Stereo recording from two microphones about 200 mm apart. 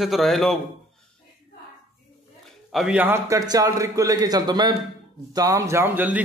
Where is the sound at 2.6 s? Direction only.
5° right (ahead or behind).